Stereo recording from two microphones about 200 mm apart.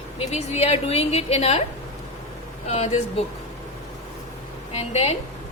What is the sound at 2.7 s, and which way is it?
Speech, 30° left (ahead or behind).